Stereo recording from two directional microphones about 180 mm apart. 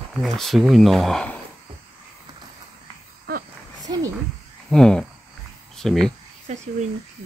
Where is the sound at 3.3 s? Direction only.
60° right (ahead or behind).